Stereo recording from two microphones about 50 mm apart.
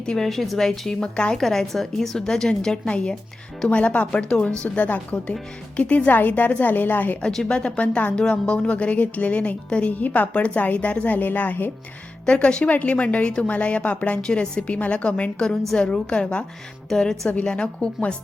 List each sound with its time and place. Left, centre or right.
0.0 s a woman's voice: centre
1.4 s a woman's voice: centre; by 4.9 s left
5.1 s a woman's voice: centre
5.7 s a woman's voice: left
6.1 s a woman's voice: left
7.2 s a woman's voice: centre; by 11.7 s left
12.2 s a woman's voice: left
14.2 s a woman's voice: centre
14.7 s a woman's voice: left